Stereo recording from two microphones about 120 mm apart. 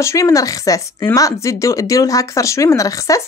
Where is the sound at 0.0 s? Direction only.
25° left (ahead or behind).